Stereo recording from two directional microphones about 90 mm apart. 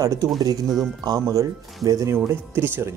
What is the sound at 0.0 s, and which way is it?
Speech, 40° right (ahead or behind).